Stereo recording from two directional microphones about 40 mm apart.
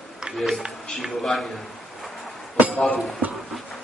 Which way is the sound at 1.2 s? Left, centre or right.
Centre.